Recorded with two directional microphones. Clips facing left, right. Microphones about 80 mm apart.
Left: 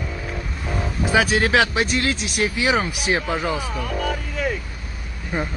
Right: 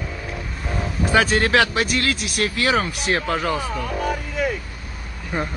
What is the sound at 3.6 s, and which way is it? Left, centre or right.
Speech, centre.